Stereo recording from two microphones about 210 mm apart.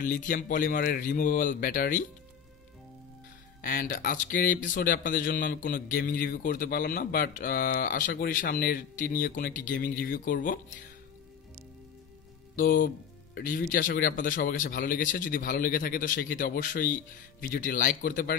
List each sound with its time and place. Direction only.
0.0 s speech: 40° left (ahead or behind)
3.6 s speech: 45° left (ahead or behind)
12.5 s speech: 40° left (ahead or behind)